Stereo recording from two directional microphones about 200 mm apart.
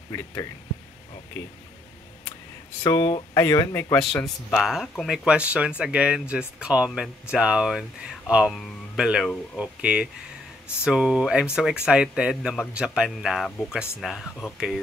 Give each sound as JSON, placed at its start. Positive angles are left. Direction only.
{"t": 0.1, "sound": "speech", "side_deg": 15}
{"t": 2.8, "sound": "speech", "side_deg": 20}
{"t": 4.5, "sound": "speech", "side_deg": 0}